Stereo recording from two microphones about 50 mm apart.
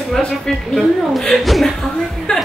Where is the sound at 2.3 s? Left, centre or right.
Centre.